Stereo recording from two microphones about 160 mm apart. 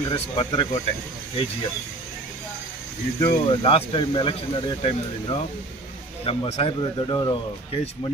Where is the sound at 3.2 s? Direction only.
20° left (ahead or behind).